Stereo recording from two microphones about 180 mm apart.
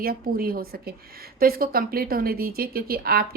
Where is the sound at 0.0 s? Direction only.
55° right (ahead or behind).